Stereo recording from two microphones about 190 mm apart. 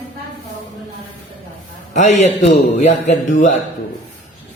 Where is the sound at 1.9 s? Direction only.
40° left (ahead or behind).